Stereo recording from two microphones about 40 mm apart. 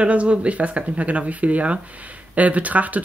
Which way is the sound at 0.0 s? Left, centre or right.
Right.